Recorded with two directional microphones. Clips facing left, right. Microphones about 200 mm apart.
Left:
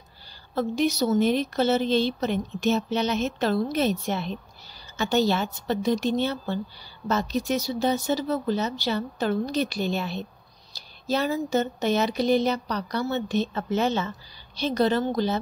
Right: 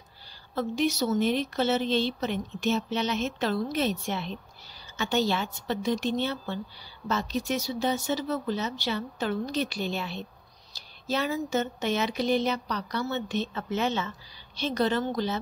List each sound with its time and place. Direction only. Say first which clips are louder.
0.6 s speech: left 3 dB; 40° left (ahead or behind)